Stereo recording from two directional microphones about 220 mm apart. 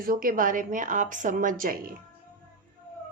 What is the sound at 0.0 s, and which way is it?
A woman's voice, 40° right (ahead or behind).